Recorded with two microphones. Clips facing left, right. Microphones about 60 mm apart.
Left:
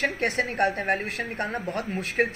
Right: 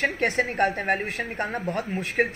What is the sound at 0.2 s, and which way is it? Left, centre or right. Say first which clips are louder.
A woman's voice: right 2 dB; right.